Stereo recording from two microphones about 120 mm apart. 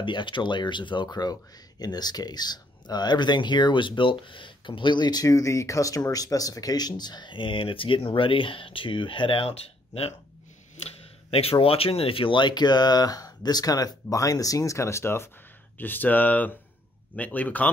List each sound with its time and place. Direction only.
0.0 s speech: 40° left (ahead or behind); by 17.6 s 15° left (ahead or behind)